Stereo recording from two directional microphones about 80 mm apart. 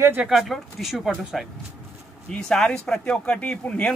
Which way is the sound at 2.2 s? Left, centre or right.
Centre.